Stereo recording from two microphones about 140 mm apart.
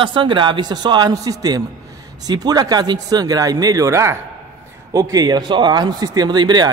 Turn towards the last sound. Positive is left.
turn(degrees=-30)  # may be behind; listen again after turning